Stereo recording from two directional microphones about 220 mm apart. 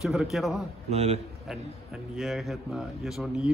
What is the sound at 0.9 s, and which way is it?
Speech, 30° right (ahead or behind).